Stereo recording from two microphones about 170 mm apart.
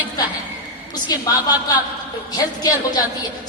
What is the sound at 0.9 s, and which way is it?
Speech, 25° left (ahead or behind).